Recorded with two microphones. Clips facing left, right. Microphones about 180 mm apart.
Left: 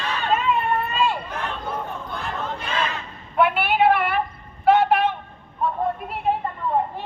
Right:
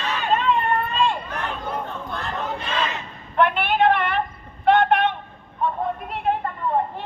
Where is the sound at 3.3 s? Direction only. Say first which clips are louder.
Even; 5° left (ahead or behind).